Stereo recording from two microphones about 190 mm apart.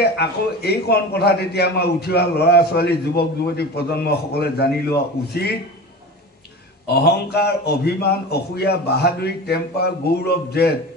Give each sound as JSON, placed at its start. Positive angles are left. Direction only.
{"t": 0.0, "sound": "a man's voice", "side_deg": 60}
{"t": 6.9, "sound": "a man's voice", "side_deg": 55}